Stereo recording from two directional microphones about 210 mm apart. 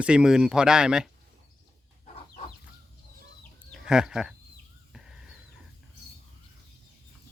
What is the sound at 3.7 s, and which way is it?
Speech, 5° right (ahead or behind).